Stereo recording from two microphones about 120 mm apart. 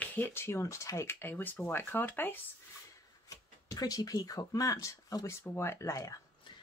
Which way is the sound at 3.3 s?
30° left (ahead or behind).